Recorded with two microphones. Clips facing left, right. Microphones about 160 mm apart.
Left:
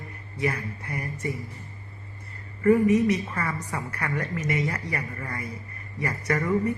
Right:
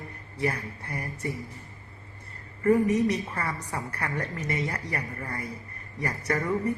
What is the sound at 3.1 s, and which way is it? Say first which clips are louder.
A woman's voice: left 3 dB; 30° right (ahead or behind).